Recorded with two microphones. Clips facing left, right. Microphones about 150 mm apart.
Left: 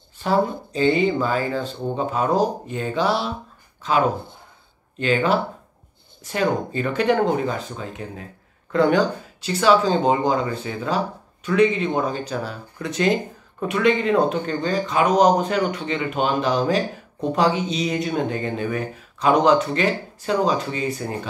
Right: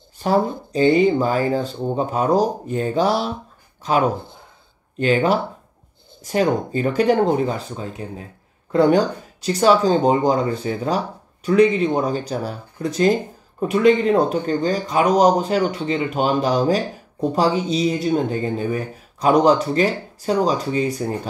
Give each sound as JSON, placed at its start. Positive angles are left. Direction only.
{"t": 0.2, "sound": "speech", "side_deg": -40}
{"t": 4.9, "sound": "speech", "side_deg": -40}